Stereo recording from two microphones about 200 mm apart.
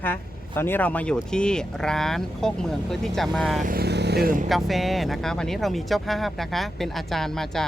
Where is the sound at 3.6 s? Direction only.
50° right (ahead or behind).